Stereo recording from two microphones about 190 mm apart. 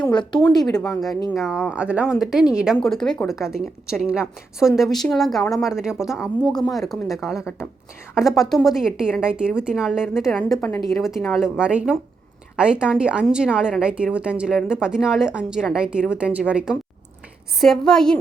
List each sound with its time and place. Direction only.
0.0 s speech: 25° left (ahead or behind)
1.3 s a woman's voice: centre (ahead or behind)